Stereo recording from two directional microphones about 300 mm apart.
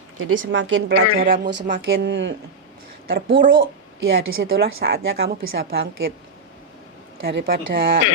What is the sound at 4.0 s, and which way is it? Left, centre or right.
A woman's voice, right.